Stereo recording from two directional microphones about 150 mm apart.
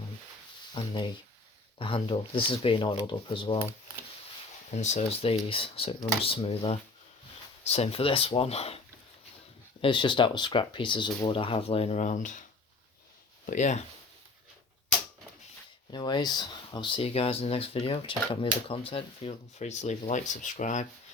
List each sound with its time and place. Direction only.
0.7 s speech: 30° left (ahead or behind)
4.7 s speech: 50° left (ahead or behind)
9.8 s speech: 30° left (ahead or behind); by 12.5 s 55° left (ahead or behind)
13.5 s speech: 50° left (ahead or behind)
15.9 s speech: 30° left (ahead or behind); by 20.8 s 55° left (ahead or behind)